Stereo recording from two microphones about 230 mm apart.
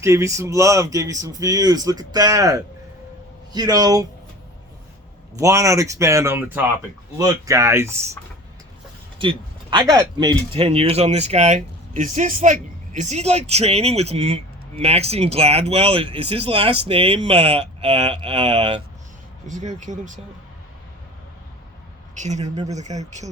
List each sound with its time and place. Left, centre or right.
0.0 s speech: centre
5.4 s speech: centre
9.1 s a man's voice: right
22.2 s speech: right